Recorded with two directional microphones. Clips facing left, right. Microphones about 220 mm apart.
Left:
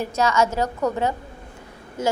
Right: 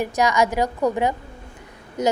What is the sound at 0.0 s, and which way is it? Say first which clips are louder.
A woman's voice: right 1 dB; 15° right (ahead or behind).